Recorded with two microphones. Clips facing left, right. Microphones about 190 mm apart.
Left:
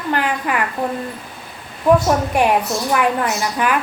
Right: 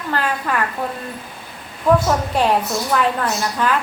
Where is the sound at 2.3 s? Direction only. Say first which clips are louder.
Left 2 dB; 15° left (ahead or behind).